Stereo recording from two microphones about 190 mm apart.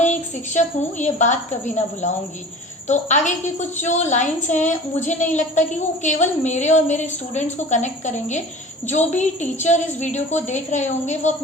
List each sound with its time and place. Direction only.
0.0 s a woman's voice: 40° left (ahead or behind)